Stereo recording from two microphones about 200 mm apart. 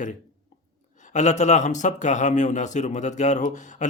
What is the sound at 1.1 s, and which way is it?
Speech, 35° left (ahead or behind).